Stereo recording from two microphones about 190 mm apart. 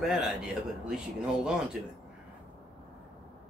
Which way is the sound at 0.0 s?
Centre (ahead or behind).